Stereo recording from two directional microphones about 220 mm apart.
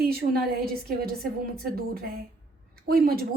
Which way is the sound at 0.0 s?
45° right (ahead or behind).